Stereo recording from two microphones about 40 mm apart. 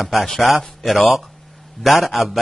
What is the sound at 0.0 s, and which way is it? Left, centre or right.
A man's voice, centre.